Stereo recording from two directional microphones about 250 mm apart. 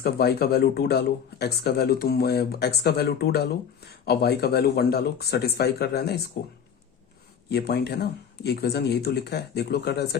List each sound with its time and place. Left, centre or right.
0.0 s speech: left
7.5 s speech: left